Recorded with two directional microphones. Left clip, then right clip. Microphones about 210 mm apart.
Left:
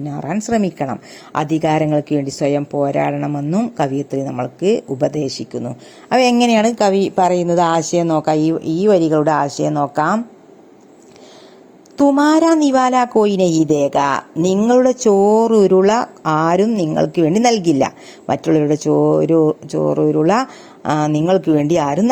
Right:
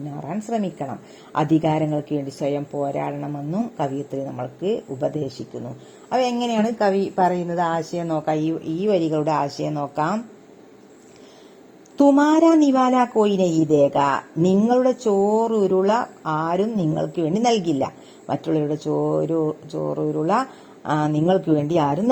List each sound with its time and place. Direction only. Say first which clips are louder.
0.2 s a woman's voice: left 7 dB; 20° left (ahead or behind)
11.9 s a woman's voice: left 3 dB; 20° left (ahead or behind)